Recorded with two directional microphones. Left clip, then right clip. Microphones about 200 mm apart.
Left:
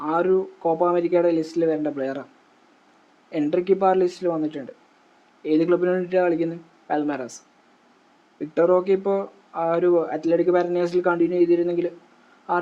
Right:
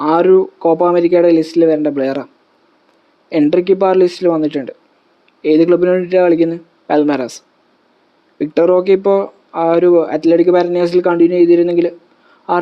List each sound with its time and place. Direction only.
0.0 s speech: 45° right (ahead or behind)
3.4 s speech: 40° right (ahead or behind)
8.4 s speech: 40° right (ahead or behind)